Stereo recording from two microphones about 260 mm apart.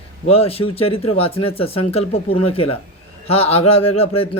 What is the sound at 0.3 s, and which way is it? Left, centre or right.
Speech, left.